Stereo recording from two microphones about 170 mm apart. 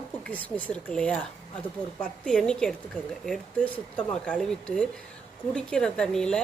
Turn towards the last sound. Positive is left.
turn(degrees=5)  # may be behind; listen again after turning